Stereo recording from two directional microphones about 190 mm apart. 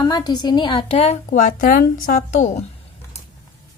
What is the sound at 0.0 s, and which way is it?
A woman's voice, 20° left (ahead or behind).